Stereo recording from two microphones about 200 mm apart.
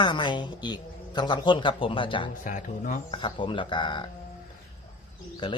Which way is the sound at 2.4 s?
40° left (ahead or behind).